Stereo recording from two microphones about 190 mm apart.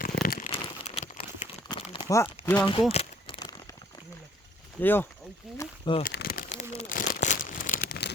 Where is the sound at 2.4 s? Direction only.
10° left (ahead or behind).